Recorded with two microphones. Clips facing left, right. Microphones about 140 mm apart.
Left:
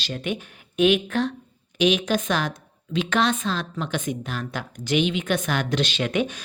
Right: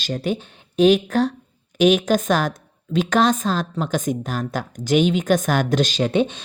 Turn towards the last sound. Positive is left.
turn(degrees=-30)  # may be behind; listen again after turning